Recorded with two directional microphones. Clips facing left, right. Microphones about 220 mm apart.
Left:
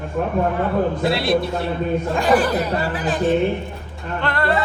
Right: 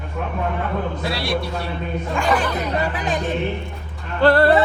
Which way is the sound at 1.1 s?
25° left (ahead or behind).